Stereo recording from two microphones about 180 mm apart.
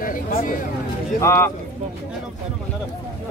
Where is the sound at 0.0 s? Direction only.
50° left (ahead or behind).